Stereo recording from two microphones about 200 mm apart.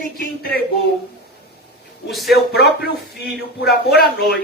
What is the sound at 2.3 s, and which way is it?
Speech, 50° left (ahead or behind).